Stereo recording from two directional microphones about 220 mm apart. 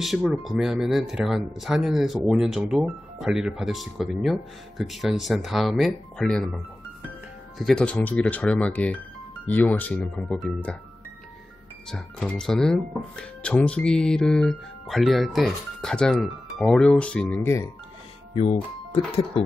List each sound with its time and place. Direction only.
0.0 s speech: centre (ahead or behind)
11.9 s speech: centre (ahead or behind)
18.3 s speech: 25° left (ahead or behind)